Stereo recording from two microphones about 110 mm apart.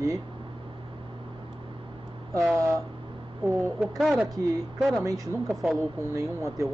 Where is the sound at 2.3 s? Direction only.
25° right (ahead or behind).